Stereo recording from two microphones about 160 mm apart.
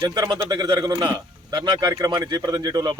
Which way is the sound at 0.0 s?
25° right (ahead or behind).